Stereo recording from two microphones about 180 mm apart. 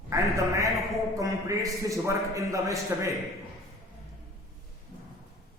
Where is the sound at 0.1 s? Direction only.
15° right (ahead or behind).